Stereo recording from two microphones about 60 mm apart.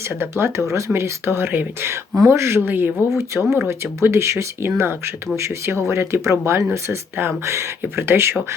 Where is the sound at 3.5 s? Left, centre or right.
Right.